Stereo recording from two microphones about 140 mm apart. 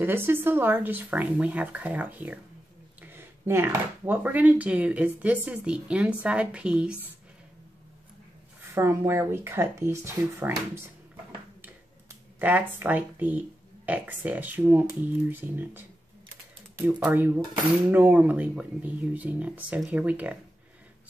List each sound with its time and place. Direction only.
0.0 s speech: 15° right (ahead or behind)
8.7 s speech: 20° right (ahead or behind)
11.6 s a sound: 15° right (ahead or behind)
13.8 s speech: 10° right (ahead or behind)
17.0 s speech: 15° right (ahead or behind)